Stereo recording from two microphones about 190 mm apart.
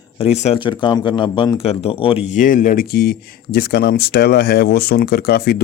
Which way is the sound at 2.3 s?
45° left (ahead or behind).